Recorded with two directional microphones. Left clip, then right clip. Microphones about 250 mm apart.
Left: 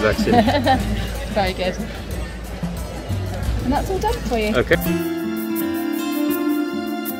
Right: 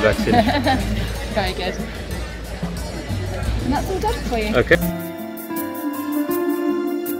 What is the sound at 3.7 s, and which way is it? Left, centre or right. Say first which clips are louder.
Speech: left 1 dB; left.